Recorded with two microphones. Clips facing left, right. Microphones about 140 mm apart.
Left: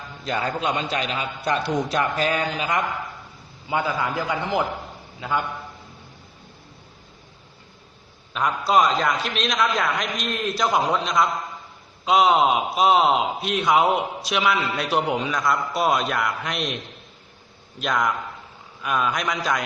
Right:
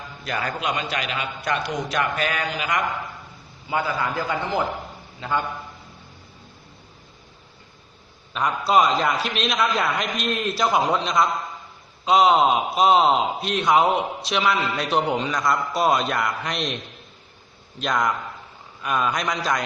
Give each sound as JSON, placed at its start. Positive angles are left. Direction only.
{"t": 0.3, "sound": "a man's voice", "side_deg": 25}
{"t": 3.7, "sound": "a man's voice", "side_deg": 15}
{"t": 8.3, "sound": "a man's voice", "side_deg": 0}
{"t": 17.7, "sound": "a man's voice", "side_deg": 0}